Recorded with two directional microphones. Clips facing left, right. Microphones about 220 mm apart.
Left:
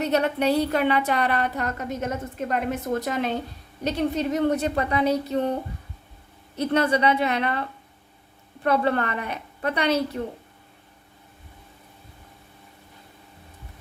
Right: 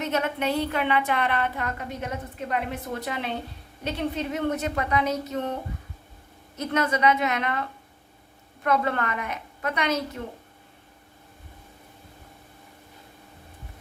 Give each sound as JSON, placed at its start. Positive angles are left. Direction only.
{"t": 0.0, "sound": "a woman's voice", "side_deg": 35}
{"t": 6.6, "sound": "a woman's voice", "side_deg": 30}
{"t": 8.6, "sound": "a woman's voice", "side_deg": 30}